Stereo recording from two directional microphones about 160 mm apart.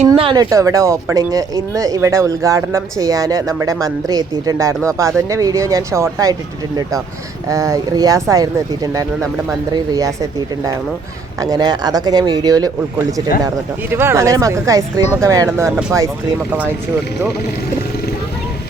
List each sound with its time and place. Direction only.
0.2 s a sound: 30° right (ahead or behind)
0.5 s speech: 20° right (ahead or behind)
7.4 s speech: 20° right (ahead or behind)
11.3 s speech: 20° right (ahead or behind)